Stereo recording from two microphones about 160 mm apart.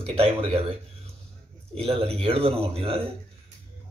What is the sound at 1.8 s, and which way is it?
A man's voice, 40° right (ahead or behind).